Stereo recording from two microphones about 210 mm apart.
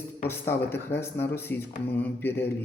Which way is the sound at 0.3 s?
10° left (ahead or behind).